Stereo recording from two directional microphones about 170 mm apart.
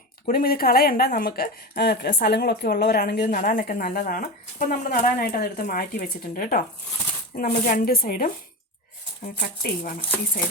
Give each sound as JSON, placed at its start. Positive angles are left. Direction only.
{"t": 0.3, "sound": "speech", "side_deg": 60}